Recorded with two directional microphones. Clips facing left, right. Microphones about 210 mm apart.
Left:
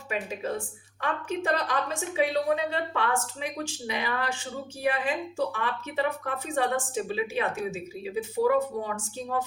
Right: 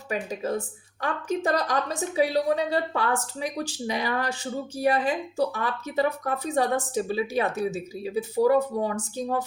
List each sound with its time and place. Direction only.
0.1 s a woman's voice: 40° right (ahead or behind)